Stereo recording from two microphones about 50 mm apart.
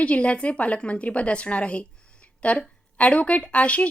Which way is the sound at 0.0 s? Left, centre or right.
Left.